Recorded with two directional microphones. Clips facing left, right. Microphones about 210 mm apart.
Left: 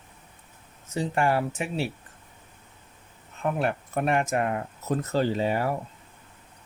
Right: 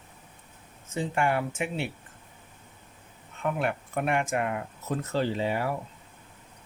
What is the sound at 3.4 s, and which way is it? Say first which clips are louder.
Speech: left 2 dB; 35° left (ahead or behind).